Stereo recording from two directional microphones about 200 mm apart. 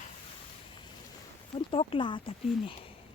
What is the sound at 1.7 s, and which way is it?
Speech, 30° left (ahead or behind).